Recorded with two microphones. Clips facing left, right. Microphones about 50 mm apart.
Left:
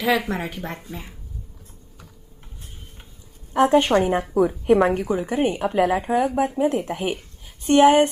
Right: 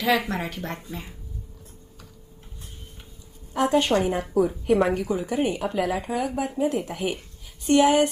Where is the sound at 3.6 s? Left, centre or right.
Left.